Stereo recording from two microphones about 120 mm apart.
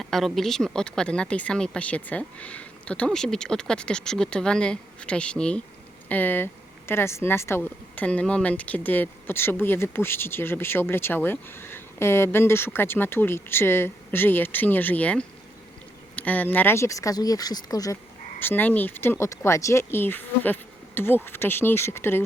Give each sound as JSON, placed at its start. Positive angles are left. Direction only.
{"t": 0.0, "sound": "speech", "side_deg": 0}
{"t": 18.3, "sound": "speech", "side_deg": 15}